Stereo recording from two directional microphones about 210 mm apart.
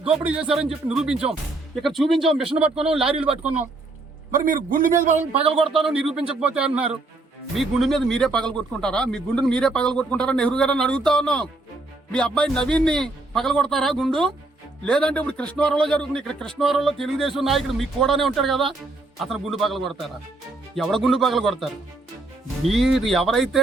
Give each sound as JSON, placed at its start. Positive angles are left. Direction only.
{"t": 0.2, "sound": "a man's voice", "side_deg": -5}
{"t": 3.2, "sound": "a man's voice", "side_deg": -30}
{"t": 5.2, "sound": "speech", "side_deg": -30}
{"t": 5.6, "sound": "a man's voice", "side_deg": 0}